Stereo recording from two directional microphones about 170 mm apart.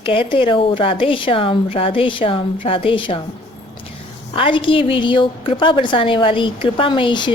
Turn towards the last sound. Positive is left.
turn(degrees=30)  # may be behind; listen again after turning